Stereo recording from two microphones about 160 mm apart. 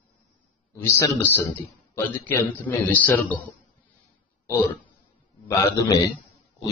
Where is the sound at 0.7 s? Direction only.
15° left (ahead or behind).